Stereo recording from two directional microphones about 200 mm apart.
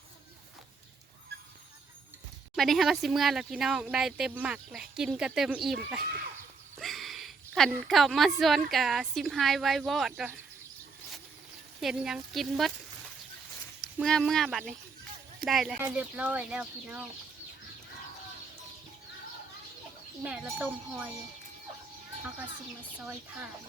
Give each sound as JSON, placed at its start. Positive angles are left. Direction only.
{"t": 2.6, "sound": "speech", "side_deg": 0}
{"t": 6.7, "sound": "a sound", "side_deg": 0}
{"t": 7.9, "sound": "speech", "side_deg": 0}
{"t": 11.8, "sound": "speech", "side_deg": 0}
{"t": 14.0, "sound": "speech", "side_deg": 0}
{"t": 20.2, "sound": "speech", "side_deg": -5}
{"t": 23.0, "sound": "speech", "side_deg": -5}